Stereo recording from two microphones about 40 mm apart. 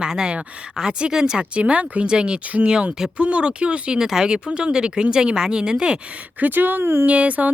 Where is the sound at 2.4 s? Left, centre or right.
Right.